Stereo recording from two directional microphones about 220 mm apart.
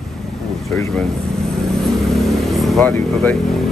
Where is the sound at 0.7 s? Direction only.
5° left (ahead or behind).